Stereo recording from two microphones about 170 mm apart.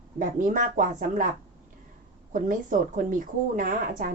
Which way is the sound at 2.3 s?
50° right (ahead or behind).